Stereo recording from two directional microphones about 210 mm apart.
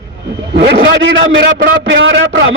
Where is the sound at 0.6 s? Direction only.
55° right (ahead or behind).